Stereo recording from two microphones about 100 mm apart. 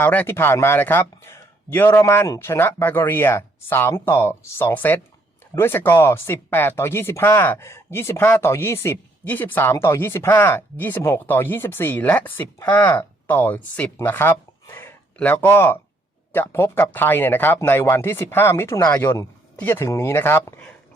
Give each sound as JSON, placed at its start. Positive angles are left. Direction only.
{"t": 0.0, "sound": "speech", "side_deg": 20}